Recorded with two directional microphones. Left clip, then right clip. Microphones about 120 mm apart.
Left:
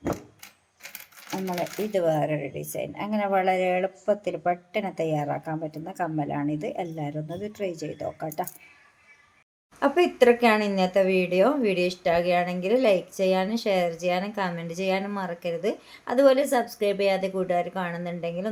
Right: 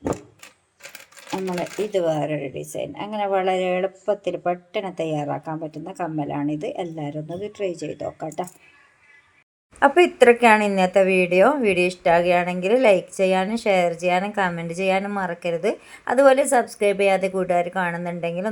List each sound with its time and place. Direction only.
1.5 s speech: 20° right (ahead or behind)
9.8 s a woman's voice: 15° right (ahead or behind)